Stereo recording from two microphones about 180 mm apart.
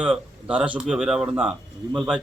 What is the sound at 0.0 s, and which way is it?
A man's voice, 5° right (ahead or behind).